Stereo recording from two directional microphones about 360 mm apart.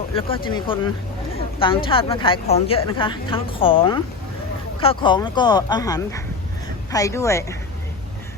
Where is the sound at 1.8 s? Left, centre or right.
Centre.